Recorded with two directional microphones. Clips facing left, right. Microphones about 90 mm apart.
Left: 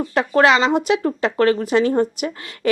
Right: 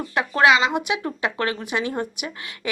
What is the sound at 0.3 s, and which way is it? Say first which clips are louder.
A woman's voice: left 3 dB; 40° left (ahead or behind).